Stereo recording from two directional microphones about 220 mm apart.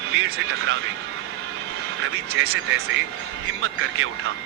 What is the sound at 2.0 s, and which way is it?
Speech, 60° right (ahead or behind).